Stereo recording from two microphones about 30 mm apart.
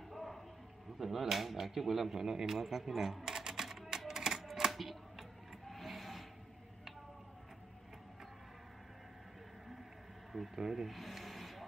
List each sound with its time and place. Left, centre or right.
0.1 s a sound: centre
0.9 s speech: centre
3.6 s music: centre
4.1 s typewriter: centre
4.6 s a sound: centre
5.7 s vehicle: centre
10.3 s speech: centre
10.9 s rub: centre